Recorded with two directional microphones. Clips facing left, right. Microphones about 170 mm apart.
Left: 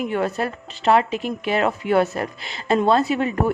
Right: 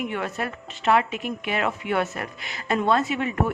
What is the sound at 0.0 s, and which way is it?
A woman's voice, 35° left (ahead or behind).